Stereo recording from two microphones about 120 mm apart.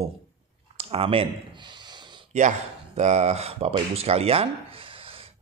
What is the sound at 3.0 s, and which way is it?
Speech, 70° right (ahead or behind).